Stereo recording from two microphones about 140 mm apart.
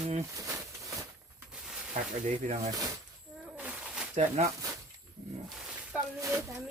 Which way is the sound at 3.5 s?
10° right (ahead or behind).